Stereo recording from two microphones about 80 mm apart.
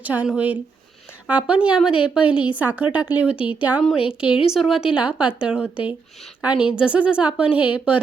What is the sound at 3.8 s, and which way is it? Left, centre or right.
A woman's voice, centre.